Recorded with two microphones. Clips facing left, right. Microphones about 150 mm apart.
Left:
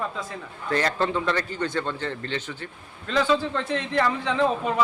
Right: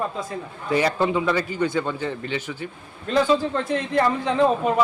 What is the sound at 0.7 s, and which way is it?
A man's voice, 10° right (ahead or behind).